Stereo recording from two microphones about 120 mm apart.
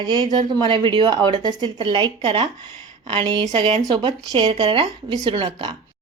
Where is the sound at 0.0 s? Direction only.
40° right (ahead or behind).